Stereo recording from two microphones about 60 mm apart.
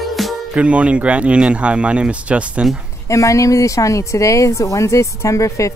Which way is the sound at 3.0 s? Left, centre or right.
Left.